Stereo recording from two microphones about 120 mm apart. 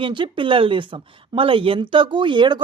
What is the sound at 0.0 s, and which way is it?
Speech, 45° right (ahead or behind).